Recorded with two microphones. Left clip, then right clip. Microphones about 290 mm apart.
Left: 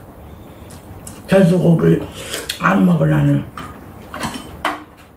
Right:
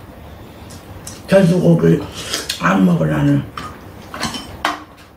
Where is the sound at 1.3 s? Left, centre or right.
Centre.